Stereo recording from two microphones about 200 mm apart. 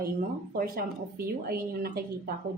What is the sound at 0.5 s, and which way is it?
A woman's voice, 45° right (ahead or behind).